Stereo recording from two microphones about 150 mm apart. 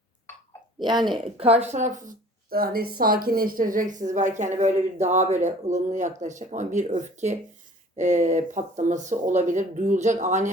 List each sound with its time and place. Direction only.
0.8 s speech: 30° right (ahead or behind)
1.1 s a woman's voice: 40° right (ahead or behind)